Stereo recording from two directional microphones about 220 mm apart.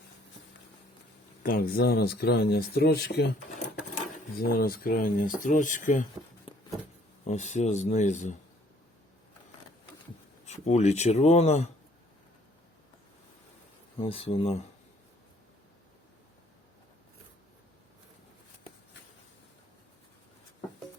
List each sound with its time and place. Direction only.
1.4 s speech: 40° left (ahead or behind)
4.4 s speech: 45° left (ahead or behind)
6.5 s a sound: 20° left (ahead or behind)
7.3 s speech: 30° left (ahead or behind)
10.4 s speech: 30° left (ahead or behind)
14.0 s speech: 25° left (ahead or behind)